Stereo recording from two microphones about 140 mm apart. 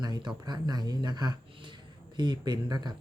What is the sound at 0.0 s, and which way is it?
Speech, 30° right (ahead or behind).